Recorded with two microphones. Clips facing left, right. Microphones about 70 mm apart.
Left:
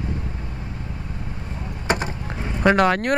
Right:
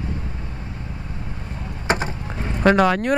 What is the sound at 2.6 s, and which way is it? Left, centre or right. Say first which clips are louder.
Speech: right 1 dB; centre.